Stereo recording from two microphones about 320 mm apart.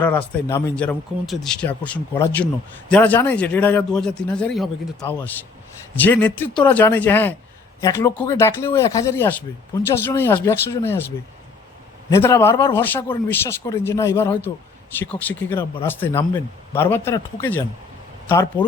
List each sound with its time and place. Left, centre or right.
0.0 s speech: centre
12.1 s speech: centre